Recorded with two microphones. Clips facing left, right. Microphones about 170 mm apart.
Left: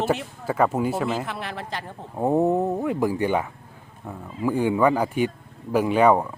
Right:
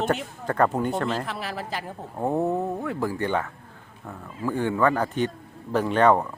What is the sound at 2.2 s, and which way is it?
Speech, 15° left (ahead or behind).